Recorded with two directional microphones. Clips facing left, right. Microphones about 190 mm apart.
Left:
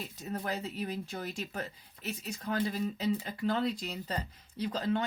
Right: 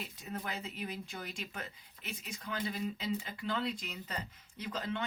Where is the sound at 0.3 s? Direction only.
40° left (ahead or behind).